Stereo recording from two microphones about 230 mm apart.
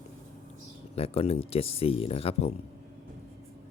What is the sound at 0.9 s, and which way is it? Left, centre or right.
Speech, left.